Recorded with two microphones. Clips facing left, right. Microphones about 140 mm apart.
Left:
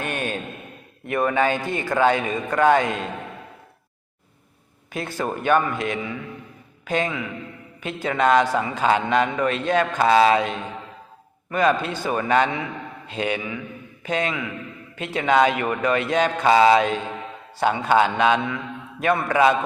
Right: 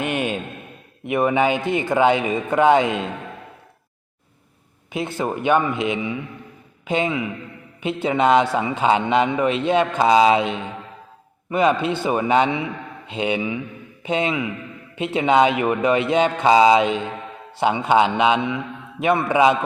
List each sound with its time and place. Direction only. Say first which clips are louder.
0.0 s a sound: right 4 dB; 15° right (ahead or behind)
1.0 s a man's voice: right 2 dB; 15° right (ahead or behind)
4.9 s a man's voice: right 3 dB; 20° right (ahead or behind)